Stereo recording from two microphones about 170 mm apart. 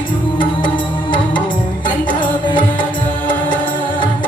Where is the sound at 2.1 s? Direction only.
30° left (ahead or behind).